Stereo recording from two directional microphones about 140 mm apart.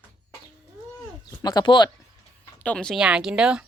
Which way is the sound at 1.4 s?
30° left (ahead or behind).